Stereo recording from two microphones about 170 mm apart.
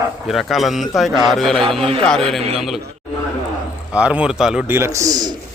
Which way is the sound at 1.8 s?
35° right (ahead or behind).